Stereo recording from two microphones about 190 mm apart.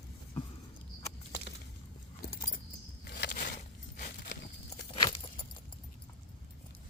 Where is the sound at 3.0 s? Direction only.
60° left (ahead or behind).